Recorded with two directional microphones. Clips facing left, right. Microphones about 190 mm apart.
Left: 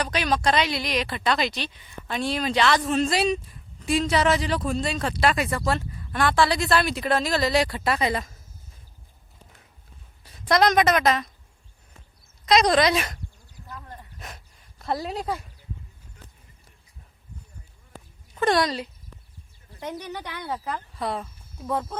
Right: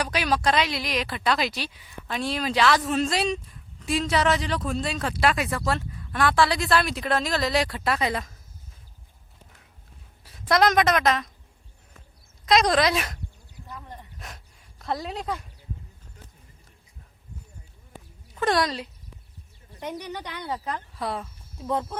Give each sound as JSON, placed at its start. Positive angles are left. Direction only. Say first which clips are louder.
{"t": 0.0, "sound": "a woman's voice", "louder": "even", "side_deg": -5}
{"t": 10.2, "sound": "a woman's voice", "louder": "left 1 dB", "side_deg": 0}
{"t": 12.5, "sound": "a woman's voice", "louder": "left 1 dB", "side_deg": 0}
{"t": 13.7, "sound": "a sound", "louder": "even", "side_deg": -20}
{"t": 14.2, "sound": "a sound", "louder": "left 1 dB", "side_deg": 0}
{"t": 18.3, "sound": "a woman's voice", "louder": "left 2 dB", "side_deg": 0}
{"t": 19.8, "sound": "speech", "louder": "even", "side_deg": -10}
{"t": 20.7, "sound": "speech", "louder": "left 1 dB", "side_deg": 0}